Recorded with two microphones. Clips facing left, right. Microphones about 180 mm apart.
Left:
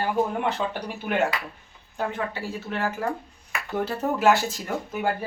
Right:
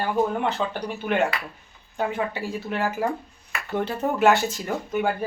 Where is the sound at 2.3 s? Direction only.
15° right (ahead or behind).